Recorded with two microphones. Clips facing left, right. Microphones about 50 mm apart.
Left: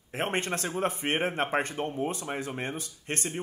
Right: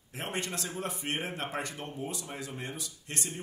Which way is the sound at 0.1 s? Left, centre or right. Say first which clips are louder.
Left 6 dB; left.